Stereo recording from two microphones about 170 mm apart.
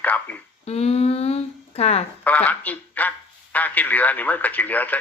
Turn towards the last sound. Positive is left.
turn(degrees=10)  # may be behind; listen again after turning